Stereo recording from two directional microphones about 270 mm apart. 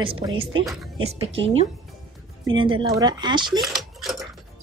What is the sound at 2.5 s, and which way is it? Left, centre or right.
Speech, centre.